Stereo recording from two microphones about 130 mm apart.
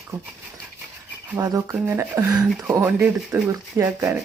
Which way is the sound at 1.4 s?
25° right (ahead or behind).